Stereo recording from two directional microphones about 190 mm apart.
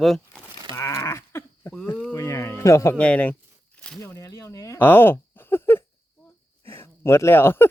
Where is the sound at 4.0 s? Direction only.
15° left (ahead or behind).